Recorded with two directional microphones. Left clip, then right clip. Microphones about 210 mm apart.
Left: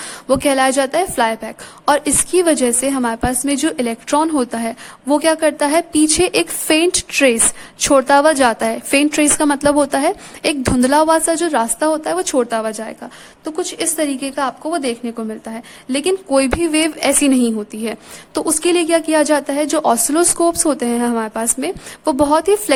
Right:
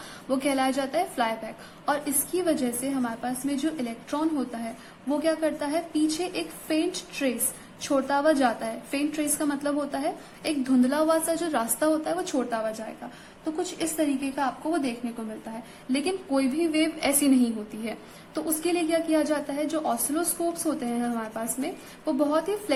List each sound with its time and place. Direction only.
0.3 s a woman's voice: 45° left (ahead or behind)